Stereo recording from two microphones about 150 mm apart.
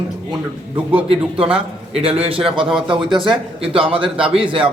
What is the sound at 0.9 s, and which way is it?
A man's voice, 40° right (ahead or behind).